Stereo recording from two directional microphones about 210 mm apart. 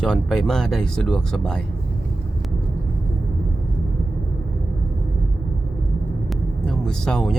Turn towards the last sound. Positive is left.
turn(degrees=5)  # may be behind; listen again after turning